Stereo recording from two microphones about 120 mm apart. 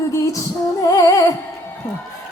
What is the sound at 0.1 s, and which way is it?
Female singing, 30° left (ahead or behind).